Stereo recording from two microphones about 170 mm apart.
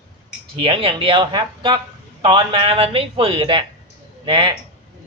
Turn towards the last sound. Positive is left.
turn(degrees=-30)  # may be behind; listen again after turning